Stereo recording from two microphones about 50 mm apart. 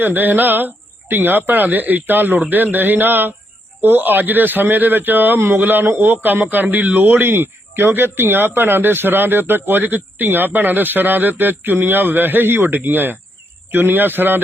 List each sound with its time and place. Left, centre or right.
0.0 s a man's voice: right